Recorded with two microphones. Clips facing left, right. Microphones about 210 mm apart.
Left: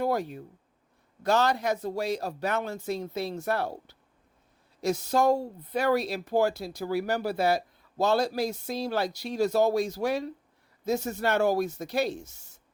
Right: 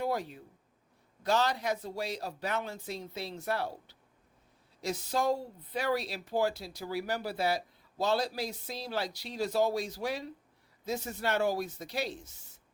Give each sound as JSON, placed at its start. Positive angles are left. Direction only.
{"t": 0.0, "sound": "speech", "side_deg": 50}
{"t": 4.8, "sound": "speech", "side_deg": 45}